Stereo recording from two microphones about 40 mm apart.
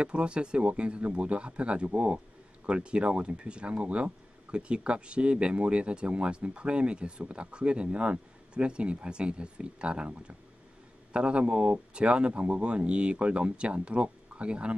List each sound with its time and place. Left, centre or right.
0.0 s speech: right